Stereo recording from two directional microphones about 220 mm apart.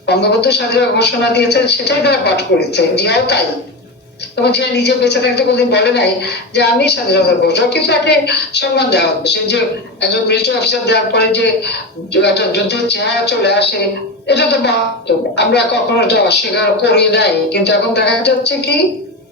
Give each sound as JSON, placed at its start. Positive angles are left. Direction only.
{"t": 0.0, "sound": "a woman's voice", "side_deg": 50}
{"t": 4.4, "sound": "a woman's voice", "side_deg": 50}